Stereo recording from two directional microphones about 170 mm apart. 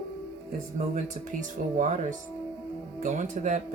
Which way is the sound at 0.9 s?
50° right (ahead or behind).